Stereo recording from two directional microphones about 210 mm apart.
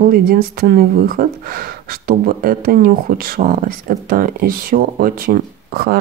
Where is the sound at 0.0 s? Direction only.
45° right (ahead or behind).